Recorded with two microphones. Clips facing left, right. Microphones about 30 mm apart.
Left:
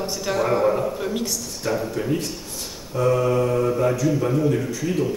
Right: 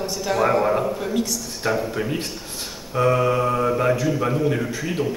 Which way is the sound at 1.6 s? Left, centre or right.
Right.